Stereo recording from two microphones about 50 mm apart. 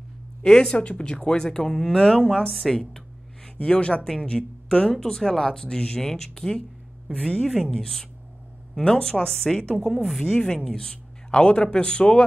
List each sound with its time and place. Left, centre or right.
0.4 s a woman's voice: centre
3.6 s a woman's voice: left